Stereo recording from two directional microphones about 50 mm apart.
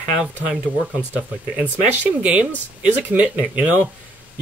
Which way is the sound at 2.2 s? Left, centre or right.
Right.